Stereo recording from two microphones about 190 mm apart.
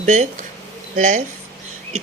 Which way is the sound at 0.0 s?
40° right (ahead or behind).